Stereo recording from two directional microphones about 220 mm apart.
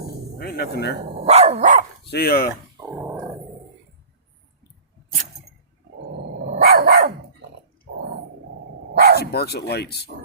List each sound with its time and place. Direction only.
0.3 s speech: 45° left (ahead or behind)
1.1 s dog: 30° right (ahead or behind)
2.0 s speech: 45° left (ahead or behind)
2.8 s dog: 10° right (ahead or behind)
6.6 s dog: 45° right (ahead or behind)
9.0 s bow-wow: 45° right (ahead or behind)
9.2 s speech: 45° left (ahead or behind)